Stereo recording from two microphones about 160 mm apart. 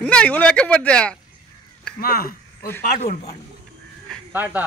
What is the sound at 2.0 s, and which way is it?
Speech, 70° left (ahead or behind).